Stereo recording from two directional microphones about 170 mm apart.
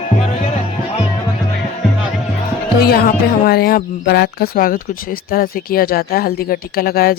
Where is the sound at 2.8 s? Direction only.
65° left (ahead or behind).